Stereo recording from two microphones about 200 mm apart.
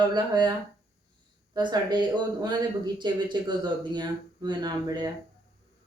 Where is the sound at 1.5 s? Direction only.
20° right (ahead or behind).